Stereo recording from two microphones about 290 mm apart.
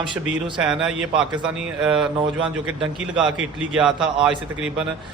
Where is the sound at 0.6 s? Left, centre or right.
Centre.